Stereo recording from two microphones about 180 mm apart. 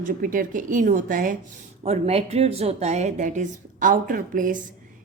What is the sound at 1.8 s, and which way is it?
Speech, 35° right (ahead or behind).